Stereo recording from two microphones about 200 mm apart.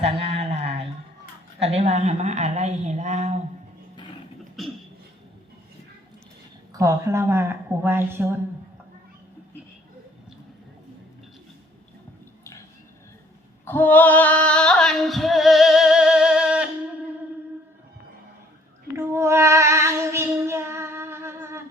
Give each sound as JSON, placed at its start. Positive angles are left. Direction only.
{"t": 0.0, "sound": "a sound", "side_deg": -30}
{"t": 1.5, "sound": "a woman's voice", "side_deg": -30}
{"t": 6.7, "sound": "a woman's voice", "side_deg": -15}
{"t": 13.7, "sound": "female singing", "side_deg": 10}
{"t": 18.9, "sound": "child singing", "side_deg": -15}